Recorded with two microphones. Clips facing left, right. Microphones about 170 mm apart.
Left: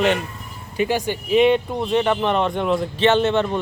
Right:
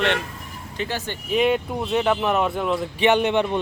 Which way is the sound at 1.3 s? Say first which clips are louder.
Left 4 dB; centre (ahead or behind).